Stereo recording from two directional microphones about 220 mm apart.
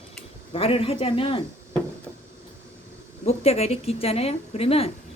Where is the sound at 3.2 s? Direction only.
30° left (ahead or behind).